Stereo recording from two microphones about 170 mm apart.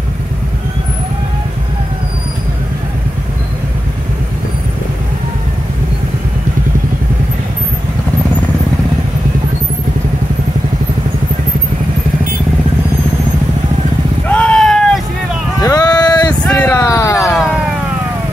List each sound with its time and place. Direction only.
14.2 s vehicle: 5° left (ahead or behind)
15.6 s a sound: 20° left (ahead or behind)
17.2 s vehicle: centre (ahead or behind)